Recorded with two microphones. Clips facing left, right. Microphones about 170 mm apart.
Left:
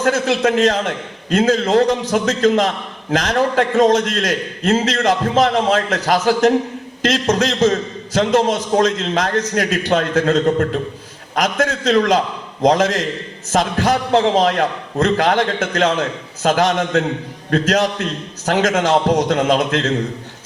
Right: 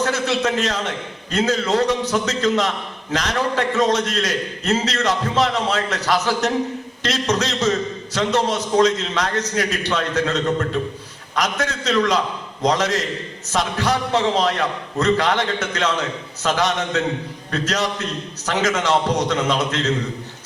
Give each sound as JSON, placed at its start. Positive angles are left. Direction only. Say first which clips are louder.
{"t": 0.0, "sound": "a man's voice", "louder": "left 4 dB", "side_deg": 50}